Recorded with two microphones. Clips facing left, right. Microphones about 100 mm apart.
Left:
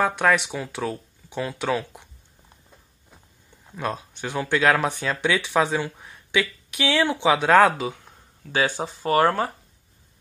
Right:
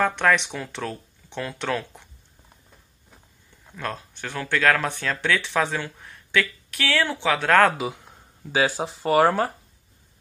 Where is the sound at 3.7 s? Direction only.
15° left (ahead or behind).